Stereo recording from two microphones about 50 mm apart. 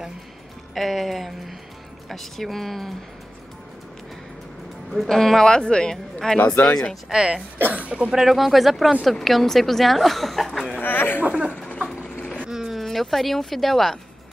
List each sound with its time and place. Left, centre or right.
0.7 s a woman's voice: centre
4.9 s speech: centre
6.6 s speech: left
7.1 s speech: centre
7.5 s speech: right
8.1 s a woman's voice: centre
10.8 s a sound: left
11.2 s speech: right
11.9 s a sound: centre
12.4 s vehicle: centre
12.7 s speech: centre